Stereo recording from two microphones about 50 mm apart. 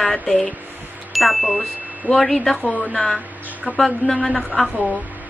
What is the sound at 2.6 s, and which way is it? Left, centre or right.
Speech, left.